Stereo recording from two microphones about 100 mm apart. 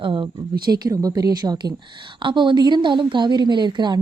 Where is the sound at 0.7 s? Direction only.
40° right (ahead or behind).